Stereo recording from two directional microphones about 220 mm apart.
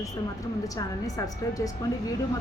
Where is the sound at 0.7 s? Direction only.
15° left (ahead or behind).